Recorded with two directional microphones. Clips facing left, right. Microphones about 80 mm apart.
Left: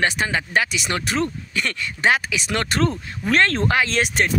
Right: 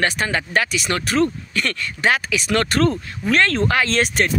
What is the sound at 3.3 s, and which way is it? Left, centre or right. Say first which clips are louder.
Speech: right 1 dB; left.